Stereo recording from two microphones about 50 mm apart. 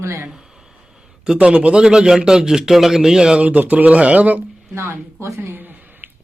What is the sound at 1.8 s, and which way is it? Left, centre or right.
Speech, centre.